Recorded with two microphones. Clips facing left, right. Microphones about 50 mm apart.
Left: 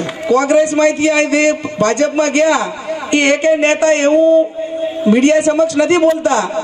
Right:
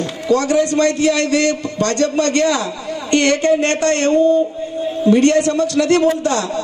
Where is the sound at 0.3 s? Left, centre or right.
Left.